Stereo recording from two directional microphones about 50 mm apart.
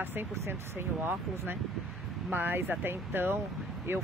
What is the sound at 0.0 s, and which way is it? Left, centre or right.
Speech, right.